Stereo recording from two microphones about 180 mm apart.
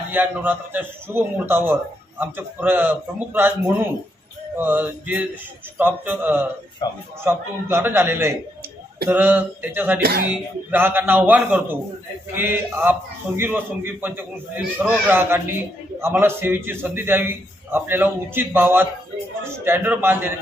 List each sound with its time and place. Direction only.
0.1 s a man's voice: 10° right (ahead or behind)
10.0 s speech: 60° right (ahead or behind)
10.2 s a man's voice: 10° right (ahead or behind)